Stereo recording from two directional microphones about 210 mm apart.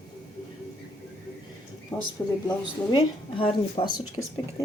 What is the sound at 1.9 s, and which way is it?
Speech, 10° left (ahead or behind).